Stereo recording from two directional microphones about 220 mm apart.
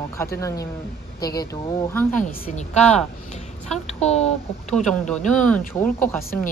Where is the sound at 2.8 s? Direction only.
5° left (ahead or behind).